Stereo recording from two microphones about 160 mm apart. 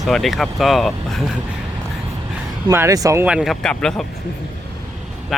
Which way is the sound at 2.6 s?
20° right (ahead or behind).